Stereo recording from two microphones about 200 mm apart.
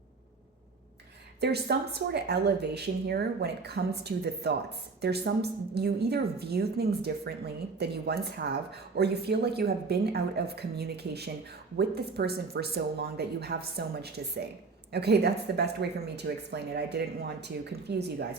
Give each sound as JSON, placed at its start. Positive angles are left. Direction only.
{"t": 1.4, "sound": "speech", "side_deg": -55}